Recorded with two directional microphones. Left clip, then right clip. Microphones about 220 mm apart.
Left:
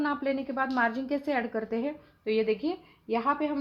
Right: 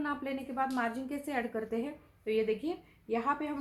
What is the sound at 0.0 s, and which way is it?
A woman's voice, 35° left (ahead or behind).